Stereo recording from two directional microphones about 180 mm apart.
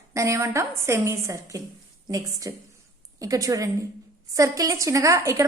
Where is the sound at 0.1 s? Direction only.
15° right (ahead or behind).